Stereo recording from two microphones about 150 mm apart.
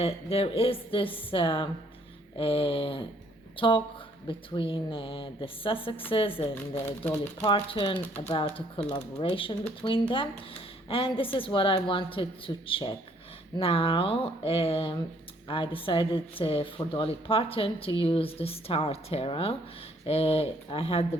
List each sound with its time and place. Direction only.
0.0 s speech: 40° left (ahead or behind)
6.5 s speech: 10° left (ahead or behind)
7.3 s speech: 30° left (ahead or behind)